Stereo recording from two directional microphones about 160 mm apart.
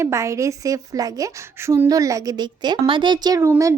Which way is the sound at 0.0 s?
20° right (ahead or behind).